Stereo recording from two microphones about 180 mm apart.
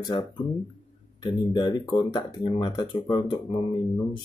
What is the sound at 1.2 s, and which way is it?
Speech, 25° left (ahead or behind).